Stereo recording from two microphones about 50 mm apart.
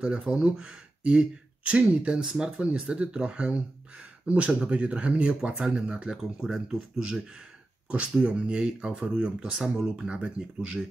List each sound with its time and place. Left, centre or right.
0.2 s speech: centre